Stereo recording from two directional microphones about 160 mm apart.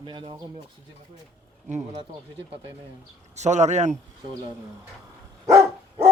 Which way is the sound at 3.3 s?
45° right (ahead or behind).